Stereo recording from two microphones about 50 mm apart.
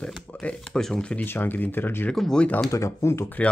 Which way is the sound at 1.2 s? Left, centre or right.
Left.